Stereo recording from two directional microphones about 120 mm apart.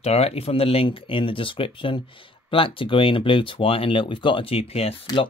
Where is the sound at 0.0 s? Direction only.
60° left (ahead or behind).